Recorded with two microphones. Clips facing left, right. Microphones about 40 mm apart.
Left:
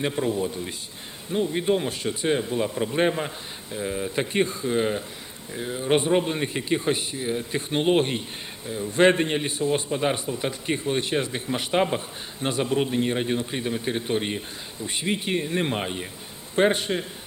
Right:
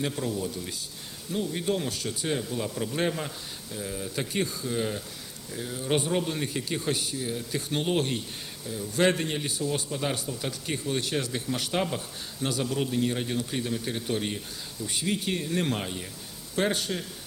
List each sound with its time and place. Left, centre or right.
0.0 s a man's voice: left